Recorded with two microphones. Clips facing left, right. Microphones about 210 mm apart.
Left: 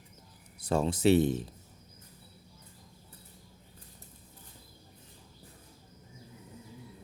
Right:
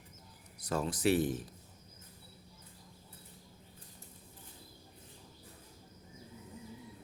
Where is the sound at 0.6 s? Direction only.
25° left (ahead or behind).